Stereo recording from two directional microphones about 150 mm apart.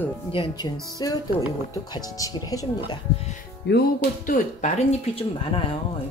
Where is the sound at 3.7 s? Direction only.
80° left; by 5.0 s 60° left (ahead or behind).